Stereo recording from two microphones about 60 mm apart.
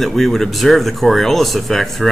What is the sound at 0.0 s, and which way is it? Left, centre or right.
Speech, centre.